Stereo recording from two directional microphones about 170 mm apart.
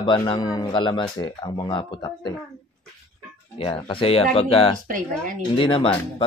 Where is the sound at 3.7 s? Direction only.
30° left (ahead or behind).